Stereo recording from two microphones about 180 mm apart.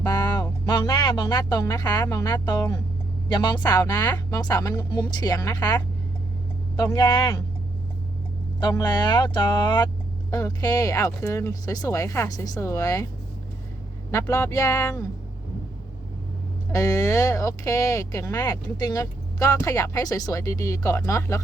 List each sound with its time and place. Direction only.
0.0 s a sound: 20° left (ahead or behind)
0.6 s speech: 25° left (ahead or behind)
8.6 s speech: 25° left (ahead or behind)
14.1 s speech: 15° left (ahead or behind)
16.7 s speech: 15° left (ahead or behind)